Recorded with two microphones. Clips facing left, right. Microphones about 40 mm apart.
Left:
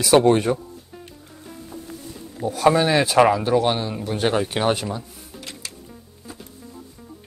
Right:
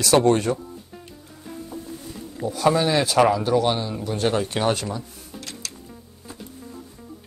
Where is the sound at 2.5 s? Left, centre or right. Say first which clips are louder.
Left 2 dB; centre.